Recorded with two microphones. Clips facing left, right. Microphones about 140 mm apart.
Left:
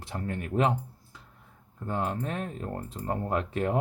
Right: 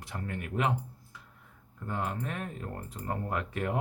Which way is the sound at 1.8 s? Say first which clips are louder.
Left 4 dB; 30° left (ahead or behind).